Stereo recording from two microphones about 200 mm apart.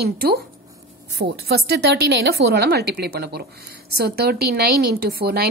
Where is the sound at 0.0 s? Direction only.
50° right (ahead or behind).